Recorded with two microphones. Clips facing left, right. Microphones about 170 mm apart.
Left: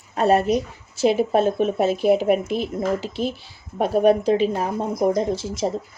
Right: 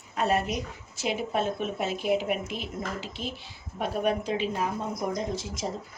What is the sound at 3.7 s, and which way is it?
Speech, 40° left (ahead or behind).